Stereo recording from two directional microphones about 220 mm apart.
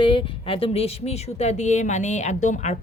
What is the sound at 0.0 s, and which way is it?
A woman's voice, 25° left (ahead or behind).